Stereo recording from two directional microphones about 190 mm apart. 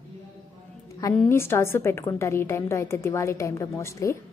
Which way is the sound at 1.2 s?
15° left (ahead or behind).